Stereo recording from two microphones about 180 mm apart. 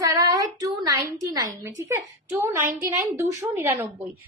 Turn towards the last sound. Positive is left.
turn(degrees=-15)  # may be behind; listen again after turning